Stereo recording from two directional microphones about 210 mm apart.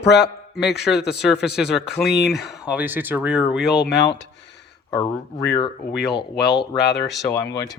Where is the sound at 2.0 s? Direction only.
55° left (ahead or behind).